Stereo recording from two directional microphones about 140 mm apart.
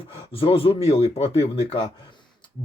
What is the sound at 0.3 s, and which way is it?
Speech, 40° left (ahead or behind).